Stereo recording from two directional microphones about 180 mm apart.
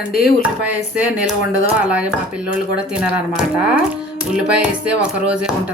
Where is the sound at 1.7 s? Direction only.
5° right (ahead or behind).